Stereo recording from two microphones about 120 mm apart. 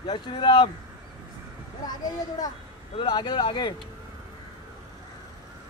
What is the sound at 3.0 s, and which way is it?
Speech, 40° left (ahead or behind).